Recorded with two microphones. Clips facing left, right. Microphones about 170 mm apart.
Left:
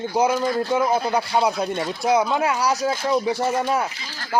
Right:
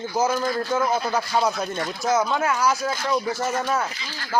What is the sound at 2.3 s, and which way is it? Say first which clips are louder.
Speech: left 2 dB; 20° left (ahead or behind).